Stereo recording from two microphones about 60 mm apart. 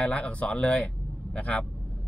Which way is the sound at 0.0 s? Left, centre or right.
Centre.